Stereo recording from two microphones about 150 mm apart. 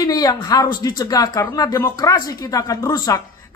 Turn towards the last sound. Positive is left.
turn(degrees=25)  # may be behind; listen again after turning